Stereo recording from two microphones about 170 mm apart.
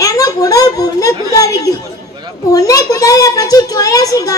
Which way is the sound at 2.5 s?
20° left (ahead or behind).